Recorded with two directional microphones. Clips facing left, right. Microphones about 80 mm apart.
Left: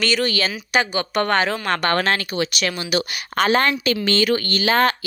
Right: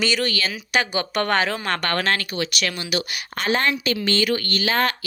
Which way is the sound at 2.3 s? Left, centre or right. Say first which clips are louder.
Left 3 dB; left.